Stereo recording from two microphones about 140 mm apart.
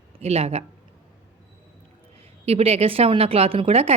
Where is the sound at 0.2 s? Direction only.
45° right (ahead or behind).